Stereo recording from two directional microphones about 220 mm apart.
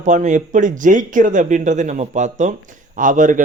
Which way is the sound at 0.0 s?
35° right (ahead or behind).